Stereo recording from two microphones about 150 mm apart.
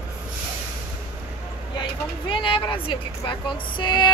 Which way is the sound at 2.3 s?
35° left (ahead or behind).